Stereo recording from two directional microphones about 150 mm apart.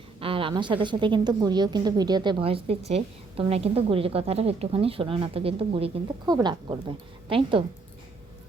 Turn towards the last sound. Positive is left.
turn(degrees=-35)  # may be behind; listen again after turning